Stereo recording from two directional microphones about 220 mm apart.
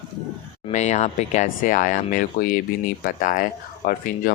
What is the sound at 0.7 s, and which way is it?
Speech, 30° left (ahead or behind).